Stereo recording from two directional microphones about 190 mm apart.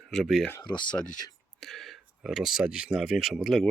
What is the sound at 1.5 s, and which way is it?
Speech, centre (ahead or behind).